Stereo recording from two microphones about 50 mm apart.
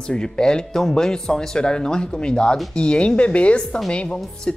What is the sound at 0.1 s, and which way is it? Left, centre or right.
Speech, centre.